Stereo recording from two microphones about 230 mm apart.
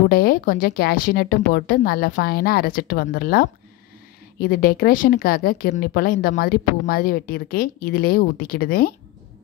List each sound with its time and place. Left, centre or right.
0.1 s speech: left